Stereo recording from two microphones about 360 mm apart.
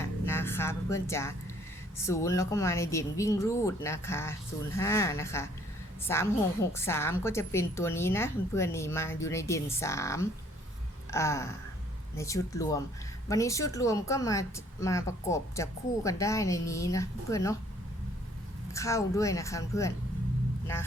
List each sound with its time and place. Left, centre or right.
0.0 s music: centre
2.0 s speech: centre
18.7 s speech: centre